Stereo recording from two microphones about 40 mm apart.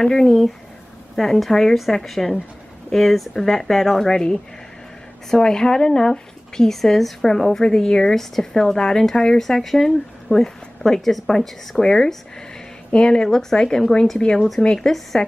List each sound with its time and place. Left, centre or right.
0.0 s speech: centre
4.1 s speech: centre
6.7 s speech: centre; by 15.3 s left